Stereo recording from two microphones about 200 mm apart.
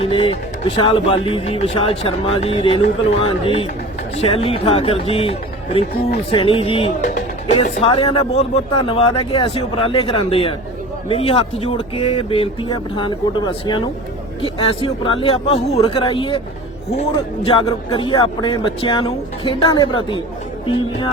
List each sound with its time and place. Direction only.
0.0 s speech: 30° left (ahead or behind)
17.4 s speech: 25° left (ahead or behind)